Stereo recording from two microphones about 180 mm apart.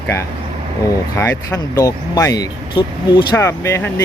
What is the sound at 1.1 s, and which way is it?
Speech, 15° left (ahead or behind).